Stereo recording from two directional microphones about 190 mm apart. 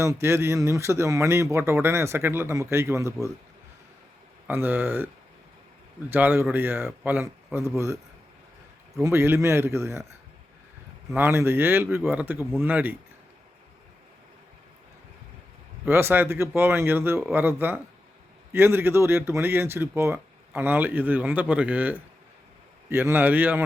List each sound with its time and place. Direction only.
0.0 s speech: 15° right (ahead or behind)
4.4 s speech: 10° right (ahead or behind)
6.1 s speech: 10° right (ahead or behind)
9.0 s speech: 15° right (ahead or behind)
11.1 s speech: 10° right (ahead or behind)
15.9 s speech: 10° right (ahead or behind)